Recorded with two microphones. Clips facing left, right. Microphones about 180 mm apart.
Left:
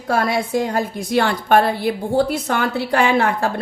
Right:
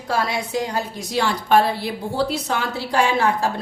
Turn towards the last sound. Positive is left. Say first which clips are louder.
# left 2 dB
turn(degrees=60)  # may be behind; listen again after turning